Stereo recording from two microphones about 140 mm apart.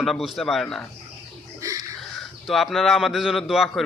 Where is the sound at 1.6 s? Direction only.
25° right (ahead or behind).